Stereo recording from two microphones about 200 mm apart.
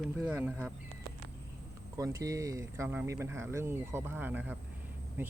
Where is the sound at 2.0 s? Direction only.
15° right (ahead or behind).